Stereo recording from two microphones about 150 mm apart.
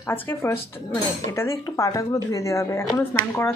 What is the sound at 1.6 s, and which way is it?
Speech, 20° left (ahead or behind).